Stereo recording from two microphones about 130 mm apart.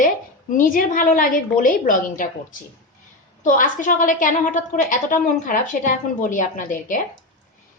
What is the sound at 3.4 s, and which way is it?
A woman's voice, 90° left.